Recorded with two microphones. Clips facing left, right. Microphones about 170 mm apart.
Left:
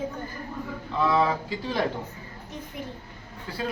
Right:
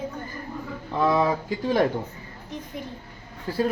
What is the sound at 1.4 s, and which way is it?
Speech, 45° right (ahead or behind).